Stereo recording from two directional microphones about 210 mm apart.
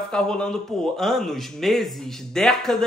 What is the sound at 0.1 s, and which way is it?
Speech, 5° left (ahead or behind).